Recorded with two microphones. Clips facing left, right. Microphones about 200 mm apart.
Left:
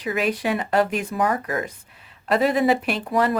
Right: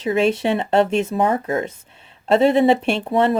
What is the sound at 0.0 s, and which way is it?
Speech, 25° right (ahead or behind).